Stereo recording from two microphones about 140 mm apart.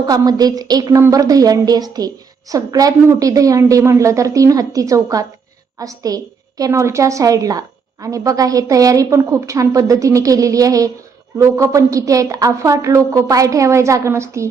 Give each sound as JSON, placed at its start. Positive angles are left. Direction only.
{"t": 0.0, "sound": "a woman's voice", "side_deg": -30}